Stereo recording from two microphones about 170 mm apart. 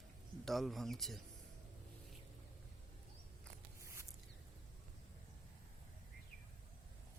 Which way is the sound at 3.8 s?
15° right (ahead or behind).